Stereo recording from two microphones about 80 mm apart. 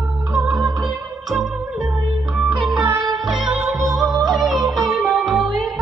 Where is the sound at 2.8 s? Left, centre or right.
Right.